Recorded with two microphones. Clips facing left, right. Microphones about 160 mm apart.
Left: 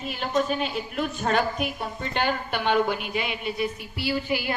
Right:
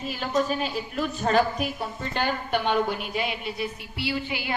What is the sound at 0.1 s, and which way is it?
A woman's voice, 40° right (ahead or behind).